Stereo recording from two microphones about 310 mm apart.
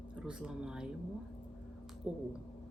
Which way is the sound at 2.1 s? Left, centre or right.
Centre.